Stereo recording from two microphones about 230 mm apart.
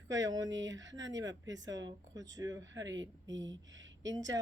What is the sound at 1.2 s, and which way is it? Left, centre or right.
Speech, centre.